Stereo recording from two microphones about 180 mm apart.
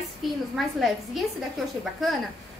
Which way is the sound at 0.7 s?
Centre (ahead or behind).